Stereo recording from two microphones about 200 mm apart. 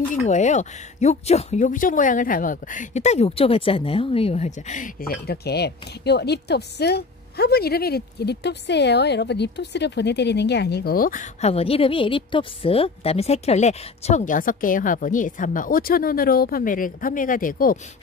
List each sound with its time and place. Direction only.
0.1 s speech: 35° left (ahead or behind)